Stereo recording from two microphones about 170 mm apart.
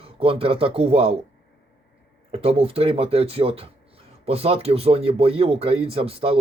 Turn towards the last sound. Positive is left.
turn(degrees=-35)  # may be behind; listen again after turning